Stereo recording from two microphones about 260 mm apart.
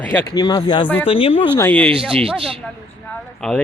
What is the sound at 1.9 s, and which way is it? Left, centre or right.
Speech, right.